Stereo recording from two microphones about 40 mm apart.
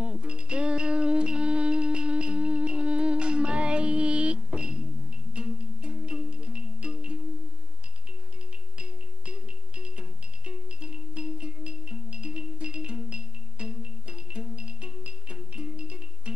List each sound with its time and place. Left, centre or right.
0.0 s music: right
8.7 s music: right